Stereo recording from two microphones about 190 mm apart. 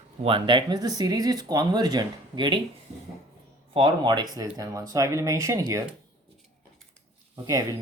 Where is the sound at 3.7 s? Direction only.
25° right (ahead or behind).